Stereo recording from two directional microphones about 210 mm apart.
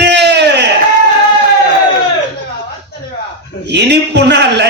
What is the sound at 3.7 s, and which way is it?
Speech, 55° right (ahead or behind).